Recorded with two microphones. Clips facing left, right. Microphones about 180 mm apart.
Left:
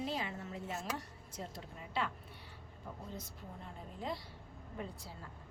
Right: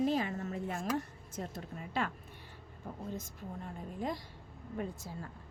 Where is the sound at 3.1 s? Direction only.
45° right (ahead or behind).